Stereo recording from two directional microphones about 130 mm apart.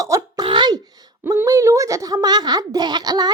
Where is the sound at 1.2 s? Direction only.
20° right (ahead or behind).